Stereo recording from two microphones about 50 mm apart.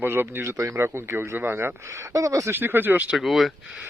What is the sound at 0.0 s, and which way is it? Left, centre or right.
Speech, right.